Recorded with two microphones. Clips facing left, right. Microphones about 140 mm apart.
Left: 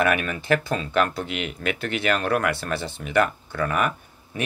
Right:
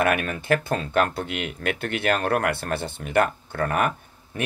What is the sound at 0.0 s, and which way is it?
Speech, 55° right (ahead or behind).